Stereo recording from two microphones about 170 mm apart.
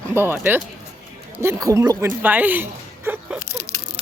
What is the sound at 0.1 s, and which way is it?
Speech, 15° right (ahead or behind).